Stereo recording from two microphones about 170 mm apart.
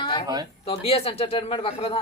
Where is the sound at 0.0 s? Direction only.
30° left (ahead or behind).